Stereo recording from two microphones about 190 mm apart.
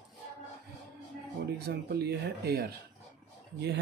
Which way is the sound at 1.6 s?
60° right (ahead or behind).